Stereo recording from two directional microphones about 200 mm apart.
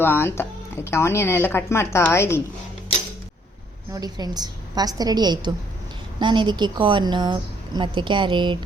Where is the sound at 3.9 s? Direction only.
20° right (ahead or behind).